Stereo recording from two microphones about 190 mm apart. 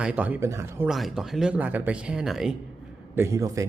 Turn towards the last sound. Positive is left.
turn(degrees=-15)  # may be behind; listen again after turning